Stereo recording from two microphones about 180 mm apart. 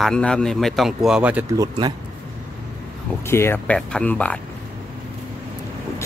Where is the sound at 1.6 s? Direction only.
25° right (ahead or behind).